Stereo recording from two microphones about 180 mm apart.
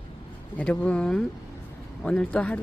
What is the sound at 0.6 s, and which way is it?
Speech, 5° left (ahead or behind).